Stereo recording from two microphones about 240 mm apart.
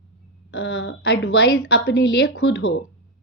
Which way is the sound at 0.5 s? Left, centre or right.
Left.